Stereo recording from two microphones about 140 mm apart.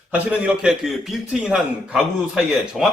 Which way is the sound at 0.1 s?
10° right (ahead or behind).